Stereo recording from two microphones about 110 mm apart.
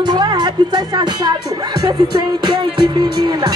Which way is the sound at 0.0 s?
40° right (ahead or behind).